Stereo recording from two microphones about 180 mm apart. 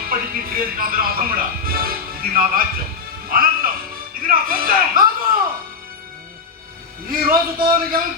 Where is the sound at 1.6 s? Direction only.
55° right (ahead or behind).